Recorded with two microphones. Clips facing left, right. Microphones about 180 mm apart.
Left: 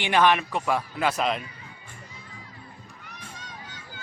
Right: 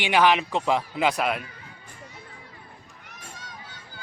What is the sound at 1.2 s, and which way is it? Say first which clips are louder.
Speech: even; 5° right (ahead or behind).